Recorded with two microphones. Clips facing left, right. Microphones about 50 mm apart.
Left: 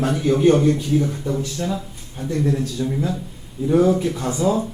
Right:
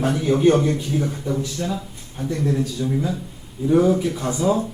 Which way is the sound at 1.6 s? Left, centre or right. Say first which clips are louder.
Left 2 dB; centre.